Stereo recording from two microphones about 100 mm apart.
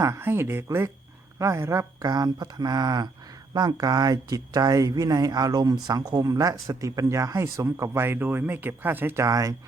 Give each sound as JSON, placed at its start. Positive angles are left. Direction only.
{"t": 0.2, "sound": "speech", "side_deg": -25}
{"t": 9.2, "sound": "speech", "side_deg": -35}